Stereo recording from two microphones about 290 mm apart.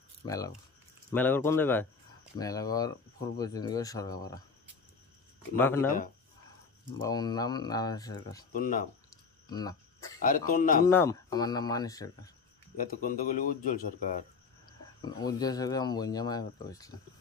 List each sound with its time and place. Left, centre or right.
0.2 s speech: centre
5.6 s speech: centre
7.0 s speech: centre
8.5 s speech: left
9.5 s speech: centre
10.2 s speech: left
10.9 s speech: centre
12.7 s speech: left
14.7 s speech: centre